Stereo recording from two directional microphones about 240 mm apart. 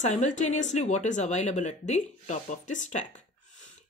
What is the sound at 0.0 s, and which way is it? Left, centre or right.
Speech, left.